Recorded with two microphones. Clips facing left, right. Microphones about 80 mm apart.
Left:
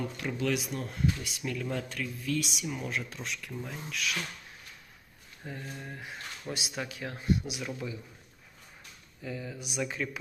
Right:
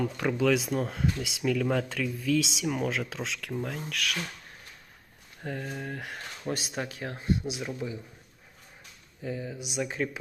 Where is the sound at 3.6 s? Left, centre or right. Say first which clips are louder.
Right 5 dB; right.